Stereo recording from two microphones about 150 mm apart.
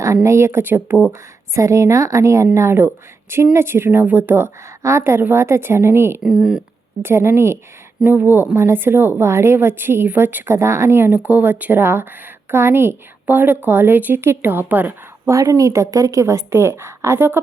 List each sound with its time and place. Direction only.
0.0 s a woman's voice: 20° right (ahead or behind)
6.2 s speech: 5° right (ahead or behind)
7.0 s a woman's voice: 15° right (ahead or behind)